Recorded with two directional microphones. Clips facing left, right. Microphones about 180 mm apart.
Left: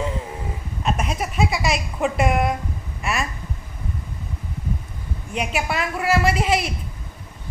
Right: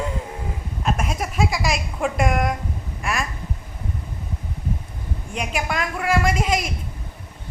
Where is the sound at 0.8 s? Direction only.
Centre (ahead or behind).